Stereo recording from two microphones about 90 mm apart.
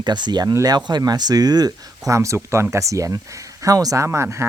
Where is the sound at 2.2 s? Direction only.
30° right (ahead or behind).